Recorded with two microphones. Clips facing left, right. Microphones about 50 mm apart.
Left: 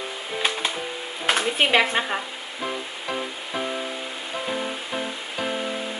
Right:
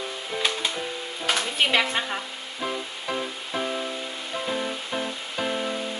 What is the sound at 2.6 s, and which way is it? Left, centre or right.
Music, centre.